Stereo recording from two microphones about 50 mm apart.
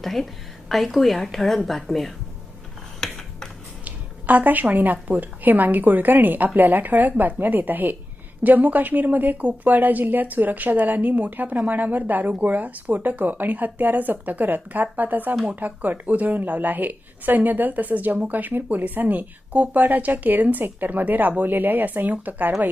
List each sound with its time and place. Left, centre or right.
0.0 s a woman's voice: centre
3.0 s a sound: centre
3.8 s a woman's voice: right